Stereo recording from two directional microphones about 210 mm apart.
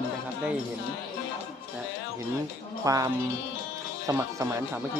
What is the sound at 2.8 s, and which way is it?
Speech, 15° right (ahead or behind).